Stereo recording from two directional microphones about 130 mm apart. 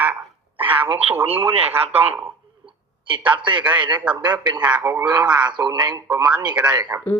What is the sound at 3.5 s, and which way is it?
A man's voice, 10° right (ahead or behind).